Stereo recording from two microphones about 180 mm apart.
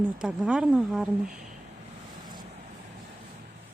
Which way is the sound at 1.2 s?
45° right (ahead or behind).